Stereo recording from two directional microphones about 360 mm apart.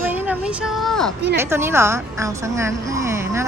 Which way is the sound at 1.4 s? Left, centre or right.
Centre.